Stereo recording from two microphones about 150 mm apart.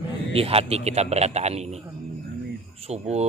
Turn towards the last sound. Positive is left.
turn(degrees=-45)  # may be behind; listen again after turning